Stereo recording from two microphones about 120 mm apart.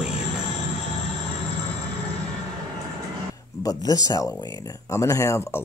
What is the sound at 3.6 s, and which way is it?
Speech, 30° left (ahead or behind).